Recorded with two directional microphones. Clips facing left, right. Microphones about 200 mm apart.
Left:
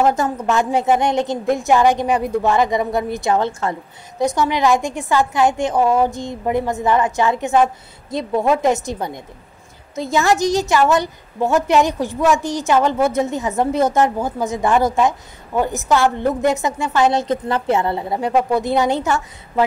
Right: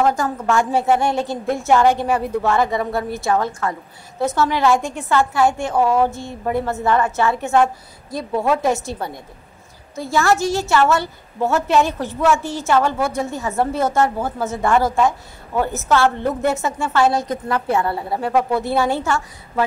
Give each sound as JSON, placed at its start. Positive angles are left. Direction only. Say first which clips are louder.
{"t": 0.0, "sound": "a woman's voice", "louder": "left 2 dB", "side_deg": 20}
{"t": 4.2, "sound": "a woman's voice", "louder": "left 1 dB", "side_deg": 15}